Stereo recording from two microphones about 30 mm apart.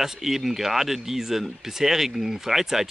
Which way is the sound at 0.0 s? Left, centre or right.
Centre.